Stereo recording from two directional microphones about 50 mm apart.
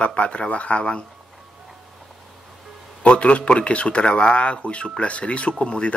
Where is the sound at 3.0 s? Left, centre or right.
Left.